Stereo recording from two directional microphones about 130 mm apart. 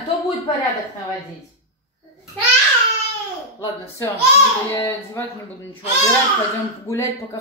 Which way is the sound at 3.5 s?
25° left (ahead or behind).